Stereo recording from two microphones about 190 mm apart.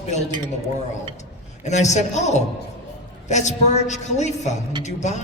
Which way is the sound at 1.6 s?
35° left (ahead or behind).